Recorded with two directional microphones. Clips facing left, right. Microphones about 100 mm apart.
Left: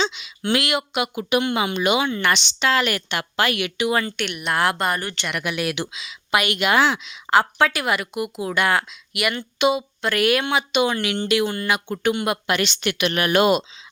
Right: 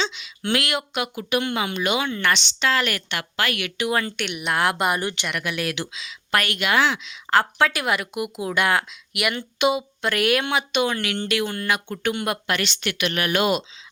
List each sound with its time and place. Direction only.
0.0 s a sound: 15° left (ahead or behind)
0.4 s speech: 5° left (ahead or behind); by 3.7 s 20° left (ahead or behind)
3.8 s a woman's voice: centre (ahead or behind)
4.9 s a woman's voice: 20° right (ahead or behind)
5.4 s speech: 10° left (ahead or behind)
12.5 s a woman's voice: 20° left (ahead or behind)